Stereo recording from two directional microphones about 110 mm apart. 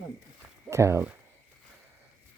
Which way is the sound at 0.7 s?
25° right (ahead or behind).